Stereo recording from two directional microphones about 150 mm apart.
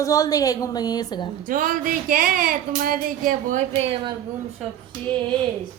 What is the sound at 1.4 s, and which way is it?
Speech, 65° right (ahead or behind).